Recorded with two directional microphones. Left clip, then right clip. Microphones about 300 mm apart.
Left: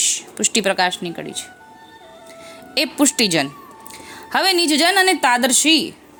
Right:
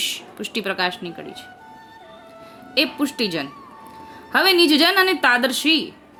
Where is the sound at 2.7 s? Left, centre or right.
Left.